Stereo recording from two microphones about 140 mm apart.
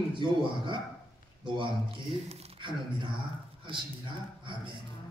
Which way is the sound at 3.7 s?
35° right (ahead or behind).